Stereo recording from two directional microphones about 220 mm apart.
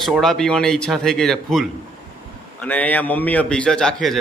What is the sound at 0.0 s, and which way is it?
A man's voice, centre (ahead or behind).